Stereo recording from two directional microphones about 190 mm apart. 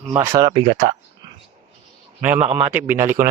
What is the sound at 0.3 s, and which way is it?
Speech, 20° right (ahead or behind).